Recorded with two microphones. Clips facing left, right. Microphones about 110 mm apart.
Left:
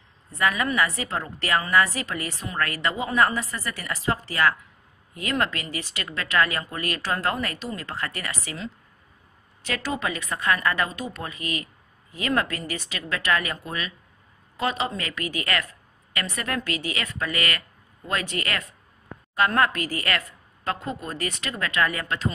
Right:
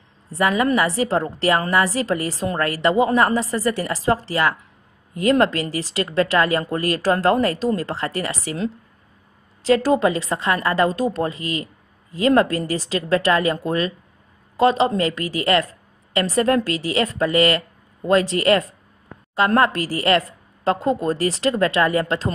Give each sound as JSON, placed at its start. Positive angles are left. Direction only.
{"t": 0.3, "sound": "a woman's voice", "side_deg": -30}
{"t": 9.6, "sound": "a woman's voice", "side_deg": -35}